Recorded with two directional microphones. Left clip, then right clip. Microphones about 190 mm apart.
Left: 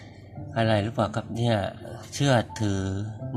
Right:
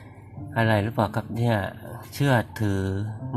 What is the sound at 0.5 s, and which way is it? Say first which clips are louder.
Speech: right 1 dB; 10° right (ahead or behind).